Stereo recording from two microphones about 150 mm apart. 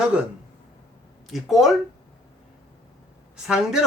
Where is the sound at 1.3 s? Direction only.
Centre (ahead or behind).